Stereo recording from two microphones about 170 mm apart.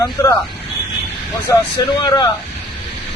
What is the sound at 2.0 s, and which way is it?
Speech, 25° left (ahead or behind).